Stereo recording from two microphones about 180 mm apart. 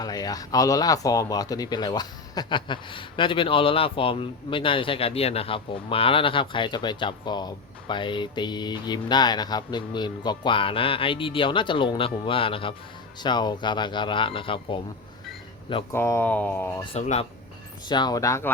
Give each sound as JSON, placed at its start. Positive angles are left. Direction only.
{"t": 0.0, "sound": "speech", "side_deg": 20}
{"t": 15.9, "sound": "speech", "side_deg": 15}
{"t": 16.9, "sound": "speech", "side_deg": 35}
{"t": 17.8, "sound": "speech", "side_deg": 25}